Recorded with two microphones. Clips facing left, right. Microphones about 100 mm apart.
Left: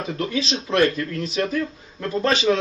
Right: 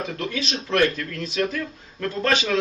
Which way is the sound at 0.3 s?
20° left (ahead or behind).